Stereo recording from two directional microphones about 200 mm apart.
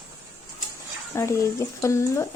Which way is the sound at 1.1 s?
15° left (ahead or behind).